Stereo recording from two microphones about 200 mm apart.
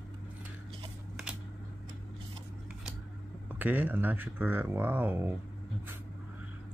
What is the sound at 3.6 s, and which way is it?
Speech, 10° right (ahead or behind).